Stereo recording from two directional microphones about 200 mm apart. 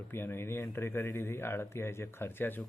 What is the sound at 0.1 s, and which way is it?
Speech, 10° left (ahead or behind).